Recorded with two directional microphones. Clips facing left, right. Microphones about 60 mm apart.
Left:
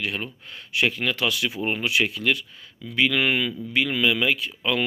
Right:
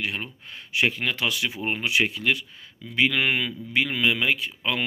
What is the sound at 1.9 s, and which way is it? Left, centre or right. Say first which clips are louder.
A man's voice: even; right.